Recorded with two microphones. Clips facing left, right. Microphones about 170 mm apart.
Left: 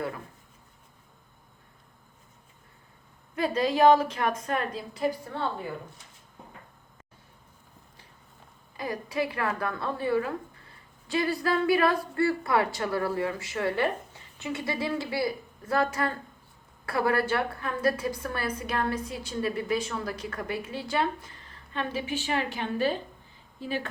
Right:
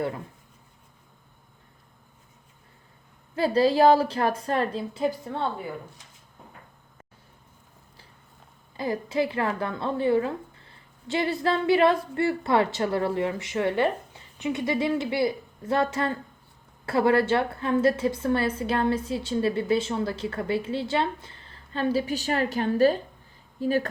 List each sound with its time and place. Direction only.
3.3 s a woman's voice: 30° right (ahead or behind)
8.7 s a woman's voice: 25° right (ahead or behind); by 23.9 s 45° right (ahead or behind)